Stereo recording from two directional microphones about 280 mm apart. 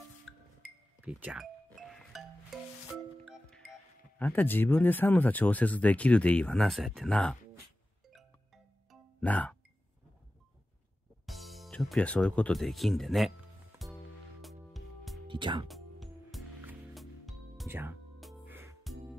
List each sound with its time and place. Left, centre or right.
0.3 s music: centre
4.2 s speech: centre
8.9 s music: centre
11.2 s speech: centre
14.4 s music: centre
15.2 s speech: centre
15.7 s music: centre